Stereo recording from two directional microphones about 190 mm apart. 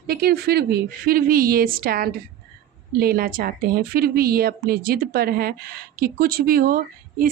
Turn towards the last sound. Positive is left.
turn(degrees=-50)  # may be behind; listen again after turning